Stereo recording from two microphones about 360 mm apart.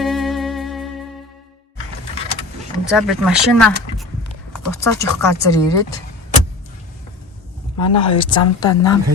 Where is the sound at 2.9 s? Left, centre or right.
Centre.